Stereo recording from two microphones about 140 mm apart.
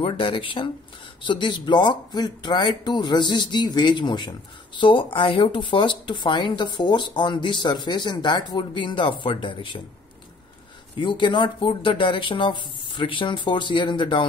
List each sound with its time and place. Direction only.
0.0 s speech: 35° left (ahead or behind)
11.0 s speech: 35° left (ahead or behind)